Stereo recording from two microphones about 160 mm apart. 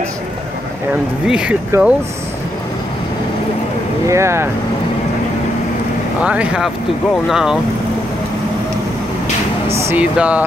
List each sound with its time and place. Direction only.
1.2 s speech: 5° right (ahead or behind)
4.1 s speech: 15° right (ahead or behind)
6.2 s speech: 10° right (ahead or behind)
9.8 s a sound: 15° right (ahead or behind)
10.1 s speech: 5° right (ahead or behind)